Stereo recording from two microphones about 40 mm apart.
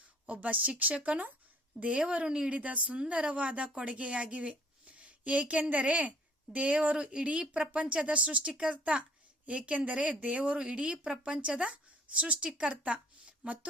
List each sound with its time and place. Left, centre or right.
0.4 s speech: right
2.6 s speech: right
3.0 s a woman's voice: right